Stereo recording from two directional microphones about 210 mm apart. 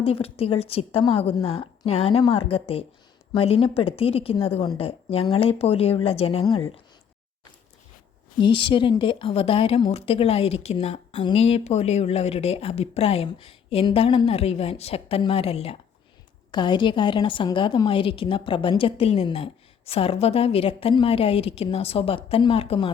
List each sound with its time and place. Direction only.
0.0 s speech: 25° left (ahead or behind)
8.4 s speech: 25° left (ahead or behind)